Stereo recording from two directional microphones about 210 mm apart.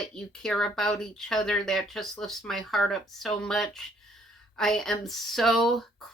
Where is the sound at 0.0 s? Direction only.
Centre (ahead or behind).